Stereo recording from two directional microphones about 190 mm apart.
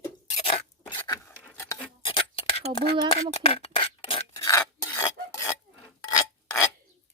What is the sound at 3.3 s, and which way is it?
Cutlery, 30° left (ahead or behind).